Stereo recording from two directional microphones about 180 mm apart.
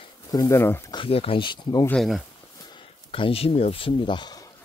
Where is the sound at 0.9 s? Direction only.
30° left (ahead or behind).